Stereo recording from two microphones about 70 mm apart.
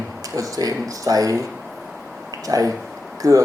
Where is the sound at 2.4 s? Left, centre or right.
Right.